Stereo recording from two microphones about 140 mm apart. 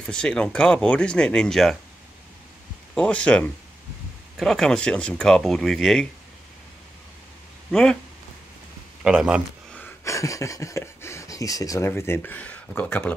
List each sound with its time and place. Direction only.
0.0 s speech: 5° left (ahead or behind)
2.9 s speech: 10° left (ahead or behind)
7.7 s speech: 5° left (ahead or behind)
9.0 s a man's voice: 5° right (ahead or behind)
10.0 s speech: 20° left (ahead or behind)